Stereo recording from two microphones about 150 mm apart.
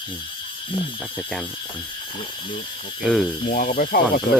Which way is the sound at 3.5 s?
65° left (ahead or behind).